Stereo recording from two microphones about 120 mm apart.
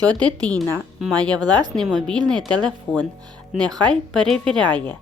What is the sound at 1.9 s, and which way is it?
Speech, 5° left (ahead or behind).